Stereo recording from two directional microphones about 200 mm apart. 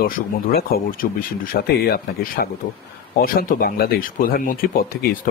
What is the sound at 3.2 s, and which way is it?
Speech, 45° left (ahead or behind).